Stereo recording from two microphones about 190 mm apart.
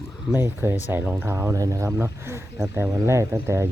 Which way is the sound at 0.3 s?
10° right (ahead or behind).